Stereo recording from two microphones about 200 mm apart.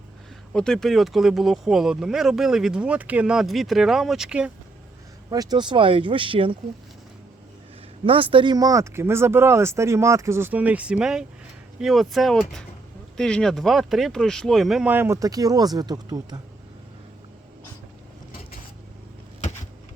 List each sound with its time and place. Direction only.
0.5 s speech: 5° left (ahead or behind)
5.3 s speech: 20° right (ahead or behind)
8.0 s speech: 25° right (ahead or behind)